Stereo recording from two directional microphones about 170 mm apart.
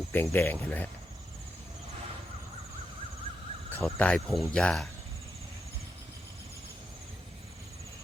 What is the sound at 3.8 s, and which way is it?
Speech, 5° left (ahead or behind).